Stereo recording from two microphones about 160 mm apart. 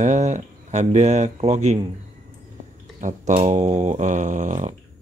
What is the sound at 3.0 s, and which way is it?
Speech, 50° right (ahead or behind).